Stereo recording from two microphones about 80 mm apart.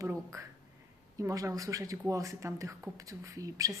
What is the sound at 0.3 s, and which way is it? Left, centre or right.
Speech, right.